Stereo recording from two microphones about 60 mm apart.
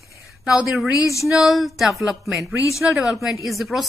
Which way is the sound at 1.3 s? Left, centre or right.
Centre.